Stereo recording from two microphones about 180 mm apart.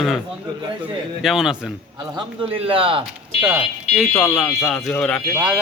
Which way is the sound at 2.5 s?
30° right (ahead or behind).